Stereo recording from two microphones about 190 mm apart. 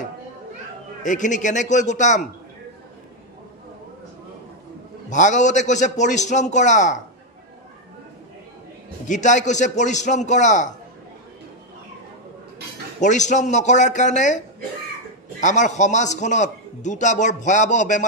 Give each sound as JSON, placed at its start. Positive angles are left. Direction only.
{"t": 1.0, "sound": "a man's voice", "side_deg": 40}
{"t": 5.1, "sound": "a man's voice", "side_deg": 40}
{"t": 9.0, "sound": "a man's voice", "side_deg": 40}
{"t": 13.0, "sound": "a man's voice", "side_deg": 40}
{"t": 15.4, "sound": "a man's voice", "side_deg": 40}